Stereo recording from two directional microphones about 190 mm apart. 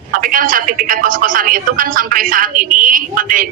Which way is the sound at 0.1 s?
50° right (ahead or behind).